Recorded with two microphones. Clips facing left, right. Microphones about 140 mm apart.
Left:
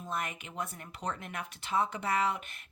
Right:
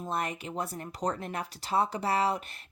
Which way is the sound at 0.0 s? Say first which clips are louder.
Right 4 dB; 35° right (ahead or behind).